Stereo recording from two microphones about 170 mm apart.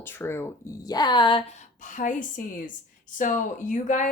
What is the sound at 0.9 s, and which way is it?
Speech, 25° left (ahead or behind).